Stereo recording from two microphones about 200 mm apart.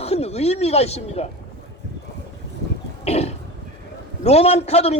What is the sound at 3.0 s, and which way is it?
Cough, 30° left (ahead or behind).